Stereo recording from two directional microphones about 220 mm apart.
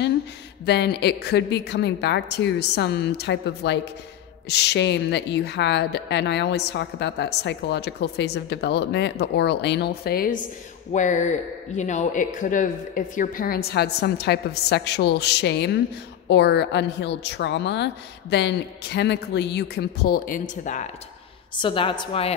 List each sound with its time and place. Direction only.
0.7 s a woman's voice: 50° left (ahead or behind); by 20.9 s 35° left (ahead or behind)
21.5 s a woman's voice: 25° left (ahead or behind)